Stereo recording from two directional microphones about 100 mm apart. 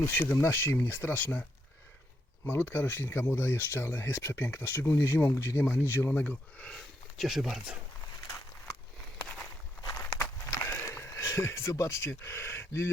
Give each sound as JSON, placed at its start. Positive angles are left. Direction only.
{"t": 0.0, "sound": "speech", "side_deg": 20}
{"t": 2.5, "sound": "speech", "side_deg": 20}
{"t": 7.2, "sound": "speech", "side_deg": 0}
{"t": 9.9, "sound": "walk", "side_deg": 30}
{"t": 10.5, "sound": "a sound", "side_deg": 30}